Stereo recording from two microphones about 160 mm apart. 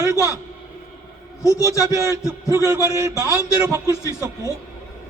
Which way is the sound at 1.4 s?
20° left (ahead or behind).